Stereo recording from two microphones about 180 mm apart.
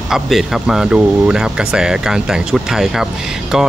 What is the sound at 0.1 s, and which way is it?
Speech, centre (ahead or behind).